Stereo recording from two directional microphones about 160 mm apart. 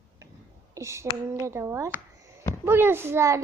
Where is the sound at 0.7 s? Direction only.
20° right (ahead or behind).